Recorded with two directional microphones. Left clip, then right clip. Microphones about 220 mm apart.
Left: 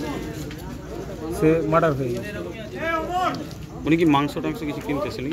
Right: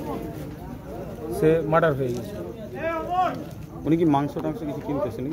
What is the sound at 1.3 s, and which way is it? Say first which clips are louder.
Speech: left 1 dB; 25° right (ahead or behind).